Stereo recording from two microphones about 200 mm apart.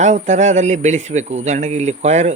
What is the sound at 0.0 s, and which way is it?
Speech, 35° right (ahead or behind).